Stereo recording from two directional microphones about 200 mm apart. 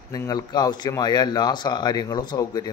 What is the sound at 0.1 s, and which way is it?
Speech, 20° left (ahead or behind).